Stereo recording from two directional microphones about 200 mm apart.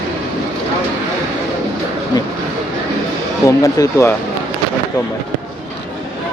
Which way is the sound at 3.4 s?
15° left (ahead or behind).